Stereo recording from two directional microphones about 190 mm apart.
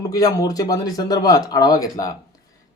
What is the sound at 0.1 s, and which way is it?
A man's voice, 20° left (ahead or behind).